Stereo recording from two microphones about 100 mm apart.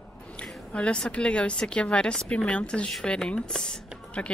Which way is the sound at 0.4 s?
10° left (ahead or behind).